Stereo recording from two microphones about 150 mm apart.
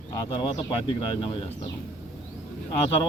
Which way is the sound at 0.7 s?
35° left (ahead or behind).